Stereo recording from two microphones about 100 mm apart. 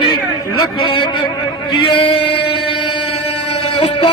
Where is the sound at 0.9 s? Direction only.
55° left (ahead or behind).